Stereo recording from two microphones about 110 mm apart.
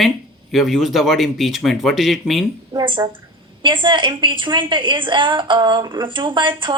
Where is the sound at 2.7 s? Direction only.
40° right (ahead or behind).